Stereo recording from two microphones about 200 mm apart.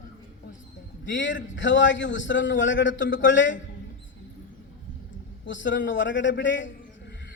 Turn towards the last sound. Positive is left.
turn(degrees=70)  # may be behind; listen again after turning